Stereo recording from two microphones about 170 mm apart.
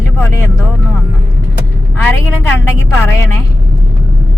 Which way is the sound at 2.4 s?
15° left (ahead or behind).